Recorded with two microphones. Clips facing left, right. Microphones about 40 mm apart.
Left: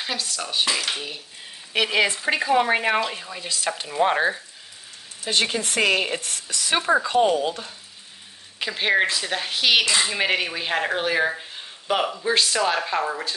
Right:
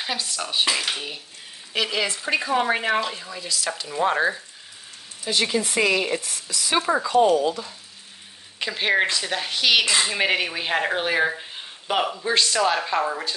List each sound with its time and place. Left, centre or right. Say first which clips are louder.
0.0 s speech: even; centre
1.8 s speech: left 4 dB; left
2.9 s speech: even; centre
3.3 s speech: left 1 dB; left
4.0 s speech: left 1 dB; centre
5.2 s speech: even; left
7.1 s speech: right 2 dB; left
8.5 s speech: even; centre